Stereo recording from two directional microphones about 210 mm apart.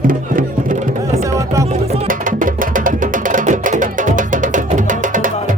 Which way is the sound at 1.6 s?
30° right (ahead or behind).